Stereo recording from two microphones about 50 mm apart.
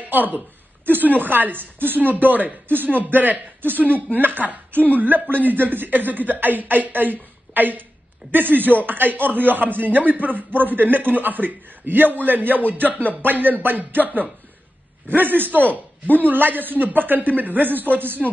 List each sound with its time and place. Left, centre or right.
0.1 s a man's voice: right
15.6 s speech: left
16.2 s speech: right